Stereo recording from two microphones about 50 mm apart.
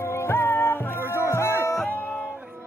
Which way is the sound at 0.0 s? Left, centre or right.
Left.